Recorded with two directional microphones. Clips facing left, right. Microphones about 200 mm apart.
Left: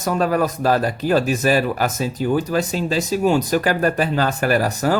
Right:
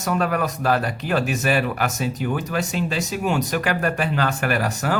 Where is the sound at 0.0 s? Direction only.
35° left (ahead or behind).